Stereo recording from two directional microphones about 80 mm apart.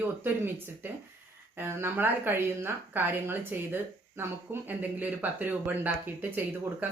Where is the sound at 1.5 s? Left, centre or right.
Right.